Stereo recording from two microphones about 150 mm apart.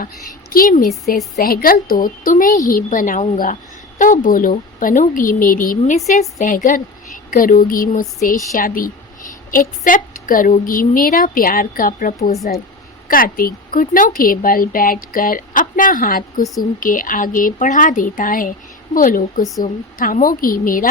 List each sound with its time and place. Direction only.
0.5 s a woman's voice: 65° left (ahead or behind)
13.1 s a woman's voice: 75° left (ahead or behind)